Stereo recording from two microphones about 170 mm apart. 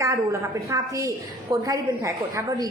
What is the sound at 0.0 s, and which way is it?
A woman's voice, 15° right (ahead or behind).